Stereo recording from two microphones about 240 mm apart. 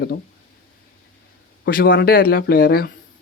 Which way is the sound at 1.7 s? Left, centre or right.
Left.